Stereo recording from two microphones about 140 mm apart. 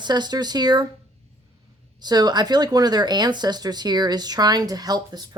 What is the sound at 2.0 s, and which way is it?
Speech, 30° right (ahead or behind).